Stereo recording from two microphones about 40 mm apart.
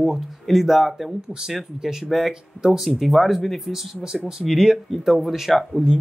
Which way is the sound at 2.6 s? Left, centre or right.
Right.